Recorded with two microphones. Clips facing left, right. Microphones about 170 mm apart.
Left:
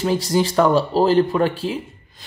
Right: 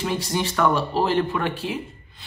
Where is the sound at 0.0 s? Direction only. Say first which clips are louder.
Left 6 dB; 35° left (ahead or behind).